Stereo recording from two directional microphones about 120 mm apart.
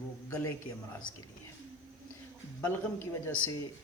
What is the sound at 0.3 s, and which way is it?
Speech, 25° left (ahead or behind).